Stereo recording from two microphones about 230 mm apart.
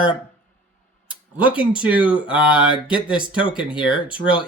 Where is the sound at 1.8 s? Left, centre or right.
Centre.